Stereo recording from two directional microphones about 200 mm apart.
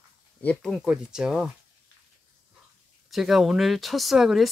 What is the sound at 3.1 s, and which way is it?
Speech, centre (ahead or behind).